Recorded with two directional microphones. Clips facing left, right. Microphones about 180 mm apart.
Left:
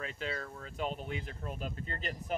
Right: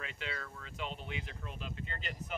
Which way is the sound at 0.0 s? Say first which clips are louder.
Left 5 dB; 40° left (ahead or behind).